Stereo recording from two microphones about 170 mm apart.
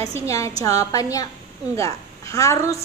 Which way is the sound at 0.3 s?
20° left (ahead or behind).